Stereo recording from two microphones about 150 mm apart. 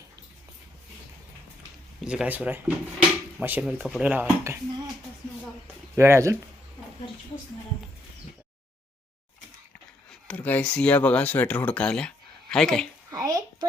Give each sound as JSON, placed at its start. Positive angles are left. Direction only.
{"t": 2.0, "sound": "speech", "side_deg": -5}
{"t": 6.0, "sound": "speech", "side_deg": -20}
{"t": 10.1, "sound": "speech", "side_deg": 10}
{"t": 13.1, "sound": "a sound", "side_deg": -25}